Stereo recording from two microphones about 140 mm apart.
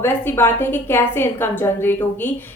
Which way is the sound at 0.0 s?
15° left (ahead or behind).